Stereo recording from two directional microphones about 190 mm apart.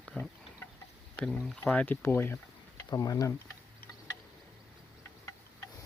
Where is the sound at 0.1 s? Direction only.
5° left (ahead or behind).